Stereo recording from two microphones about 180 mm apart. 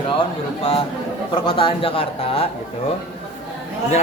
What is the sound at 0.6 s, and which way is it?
Speech, 30° left (ahead or behind).